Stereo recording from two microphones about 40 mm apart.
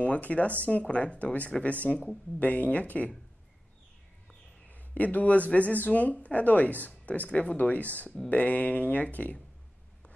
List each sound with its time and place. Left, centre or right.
0.0 s speech: left
4.6 s a man's voice: left